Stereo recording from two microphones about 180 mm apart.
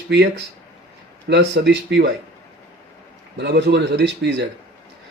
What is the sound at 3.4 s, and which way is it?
A man's voice, 70° right (ahead or behind).